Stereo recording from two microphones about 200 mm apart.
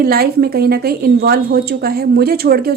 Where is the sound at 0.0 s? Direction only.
50° right (ahead or behind).